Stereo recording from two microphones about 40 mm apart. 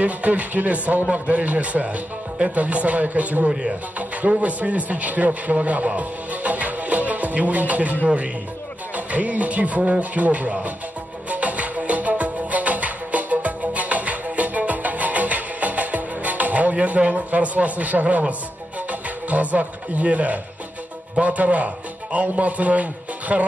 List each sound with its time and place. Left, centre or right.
0.0 s a man's voice: right
11.2 s music: right
16.8 s speech: right